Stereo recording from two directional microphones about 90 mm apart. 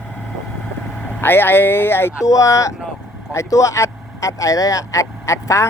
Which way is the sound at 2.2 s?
40° left (ahead or behind).